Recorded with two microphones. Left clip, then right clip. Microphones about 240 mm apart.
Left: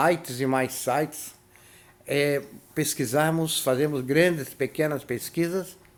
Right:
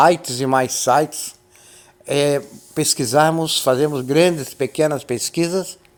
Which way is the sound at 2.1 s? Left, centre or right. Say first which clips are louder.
Right 7 dB; right.